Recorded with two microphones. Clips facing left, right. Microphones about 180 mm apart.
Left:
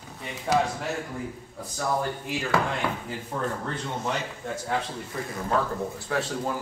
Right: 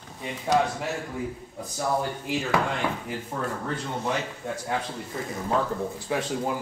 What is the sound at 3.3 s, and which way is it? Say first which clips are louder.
Speech: left 2 dB; 5° right (ahead or behind).